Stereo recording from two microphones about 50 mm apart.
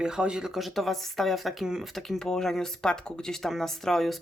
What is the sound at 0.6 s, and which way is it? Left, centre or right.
Speech, centre.